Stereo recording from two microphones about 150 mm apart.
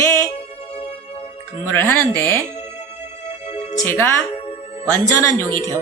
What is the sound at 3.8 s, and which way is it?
Speech, 15° left (ahead or behind).